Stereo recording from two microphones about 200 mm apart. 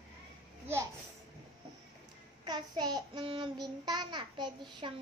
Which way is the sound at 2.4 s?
20° right (ahead or behind).